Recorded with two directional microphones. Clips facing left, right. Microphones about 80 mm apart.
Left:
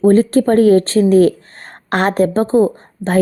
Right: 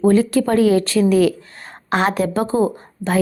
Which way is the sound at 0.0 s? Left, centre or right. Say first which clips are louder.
Left 4 dB; left.